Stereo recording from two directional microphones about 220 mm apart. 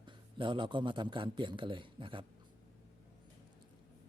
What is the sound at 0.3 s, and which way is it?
A man's voice, 20° right (ahead or behind).